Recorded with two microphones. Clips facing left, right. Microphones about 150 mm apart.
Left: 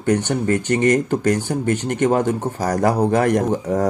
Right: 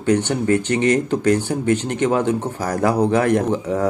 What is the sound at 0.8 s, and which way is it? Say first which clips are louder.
Speech: left 2 dB; 10° left (ahead or behind).